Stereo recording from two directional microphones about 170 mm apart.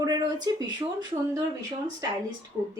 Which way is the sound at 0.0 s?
25° right (ahead or behind).